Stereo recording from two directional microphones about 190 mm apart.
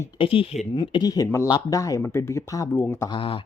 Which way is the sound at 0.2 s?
30° left (ahead or behind).